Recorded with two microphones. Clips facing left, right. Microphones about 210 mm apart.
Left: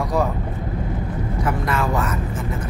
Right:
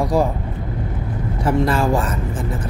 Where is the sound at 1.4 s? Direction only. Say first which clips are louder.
Right 6 dB; 30° right (ahead or behind).